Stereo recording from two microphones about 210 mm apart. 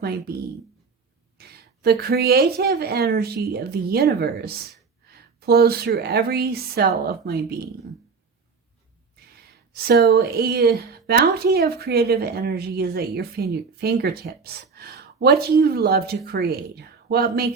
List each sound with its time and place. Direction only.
1.4 s a woman's voice: 50° right (ahead or behind)
9.7 s a woman's voice: 45° right (ahead or behind)